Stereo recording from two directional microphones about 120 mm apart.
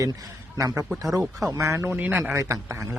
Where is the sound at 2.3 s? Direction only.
25° right (ahead or behind).